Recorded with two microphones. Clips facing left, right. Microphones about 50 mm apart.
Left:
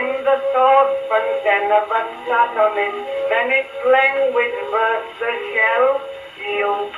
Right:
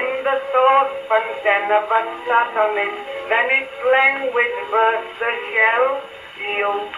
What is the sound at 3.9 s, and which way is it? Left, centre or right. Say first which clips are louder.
Speech: left 1 dB; right.